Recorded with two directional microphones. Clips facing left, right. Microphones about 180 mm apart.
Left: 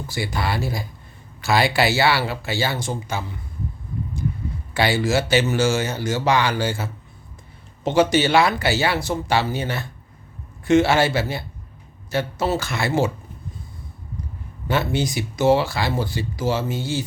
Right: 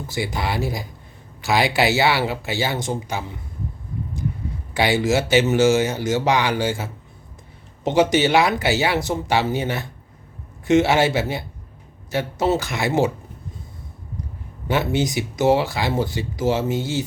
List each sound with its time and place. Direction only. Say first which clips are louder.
0.1 s speech: right 1 dB; 20° right (ahead or behind)
4.7 s speech: right 1 dB; 15° right (ahead or behind)
14.7 s speech: right 1 dB; 20° right (ahead or behind)